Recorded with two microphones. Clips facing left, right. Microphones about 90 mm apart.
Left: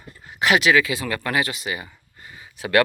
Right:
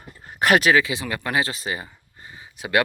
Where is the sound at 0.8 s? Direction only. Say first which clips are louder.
Left 2 dB; 20° right (ahead or behind).